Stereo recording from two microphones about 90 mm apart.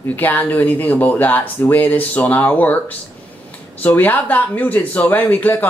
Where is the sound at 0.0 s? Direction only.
20° left (ahead or behind).